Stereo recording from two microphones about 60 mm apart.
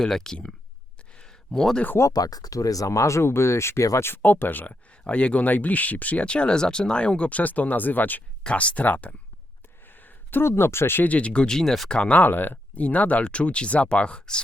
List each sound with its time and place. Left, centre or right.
0.0 s speech: centre
1.1 s a sound: centre
2.0 s speech: left
4.0 s speech: left
9.8 s a sound: left
10.4 s speech: left
11.0 s speech: left; by 11.9 s centre
11.9 s speech: centre